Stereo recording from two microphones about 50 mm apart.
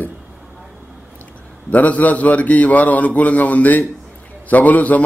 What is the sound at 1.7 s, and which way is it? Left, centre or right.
A man's voice, left.